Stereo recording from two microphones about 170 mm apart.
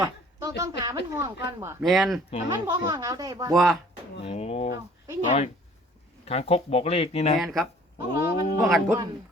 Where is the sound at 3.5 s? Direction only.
Centre (ahead or behind).